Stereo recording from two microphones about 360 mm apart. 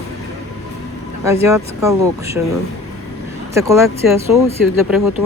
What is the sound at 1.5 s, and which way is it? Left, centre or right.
Speech, centre.